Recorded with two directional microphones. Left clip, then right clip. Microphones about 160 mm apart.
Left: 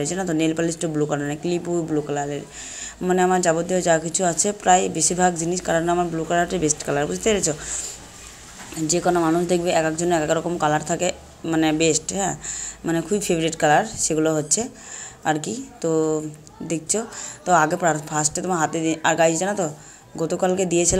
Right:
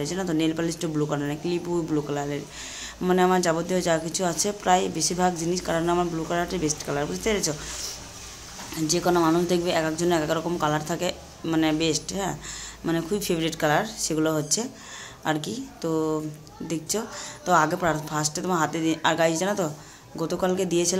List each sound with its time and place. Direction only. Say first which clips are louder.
0.0 s speech: left 3 dB; 20° left (ahead or behind)
8.7 s speech: left 2 dB; 15° left (ahead or behind)